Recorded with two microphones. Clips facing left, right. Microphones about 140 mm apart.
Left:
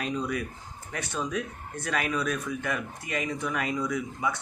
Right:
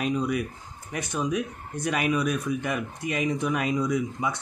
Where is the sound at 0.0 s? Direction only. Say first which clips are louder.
Right 4 dB; 10° right (ahead or behind).